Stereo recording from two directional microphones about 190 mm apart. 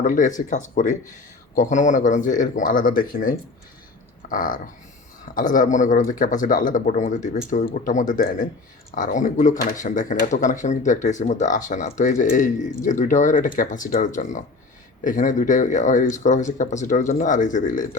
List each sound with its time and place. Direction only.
0.0 s speech: 40° left (ahead or behind)